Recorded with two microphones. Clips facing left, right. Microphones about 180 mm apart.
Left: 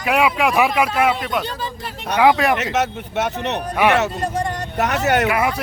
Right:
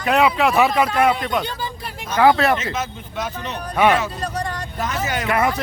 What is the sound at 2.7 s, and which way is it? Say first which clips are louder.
Speech: left 6 dB; 70° left (ahead or behind).